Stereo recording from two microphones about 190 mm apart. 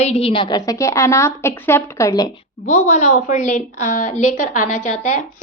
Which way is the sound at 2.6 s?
35° left (ahead or behind).